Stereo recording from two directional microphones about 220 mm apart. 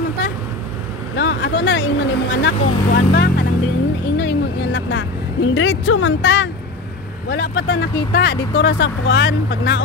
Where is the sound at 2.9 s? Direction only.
50° left (ahead or behind).